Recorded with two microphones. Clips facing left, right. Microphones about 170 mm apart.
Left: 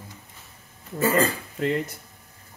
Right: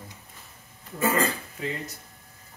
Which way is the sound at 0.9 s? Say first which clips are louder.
Left 3 dB; 35° left (ahead or behind).